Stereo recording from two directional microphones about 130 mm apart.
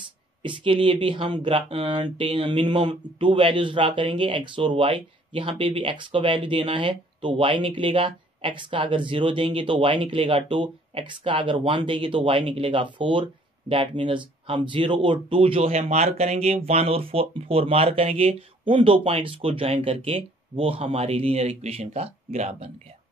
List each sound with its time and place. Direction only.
0.4 s speech: 40° right (ahead or behind); by 22.7 s 55° right (ahead or behind)